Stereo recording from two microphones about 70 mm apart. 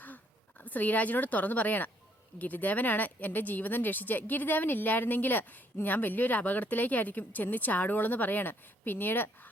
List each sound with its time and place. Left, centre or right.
0.6 s speech: left